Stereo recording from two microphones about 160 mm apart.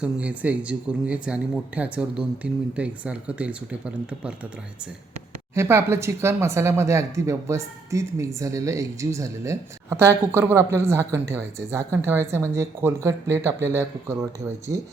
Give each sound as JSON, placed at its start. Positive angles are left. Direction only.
{"t": 0.0, "sound": "speech", "side_deg": -10}
{"t": 5.5, "sound": "speech", "side_deg": -15}